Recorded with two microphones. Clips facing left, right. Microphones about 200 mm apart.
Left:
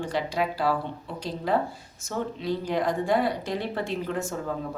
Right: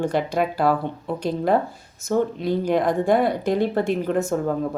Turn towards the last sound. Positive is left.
turn(degrees=-55)  # may be behind; listen again after turning